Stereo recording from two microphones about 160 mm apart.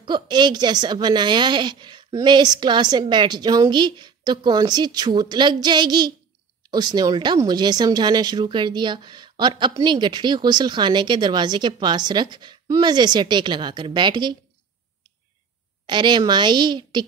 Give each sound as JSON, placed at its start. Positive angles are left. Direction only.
{"t": 0.0, "sound": "speech", "side_deg": -30}
{"t": 15.9, "sound": "speech", "side_deg": -30}